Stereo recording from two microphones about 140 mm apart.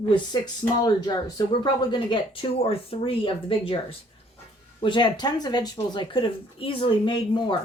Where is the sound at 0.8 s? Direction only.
30° left (ahead or behind).